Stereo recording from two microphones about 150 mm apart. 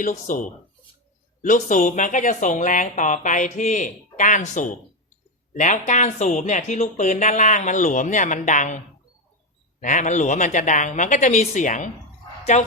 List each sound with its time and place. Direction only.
0.0 s speech: 60° left (ahead or behind)
9.8 s a woman's voice: 60° left (ahead or behind)